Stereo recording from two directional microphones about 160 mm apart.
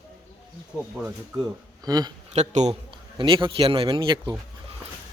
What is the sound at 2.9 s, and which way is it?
A man's voice, 30° right (ahead or behind).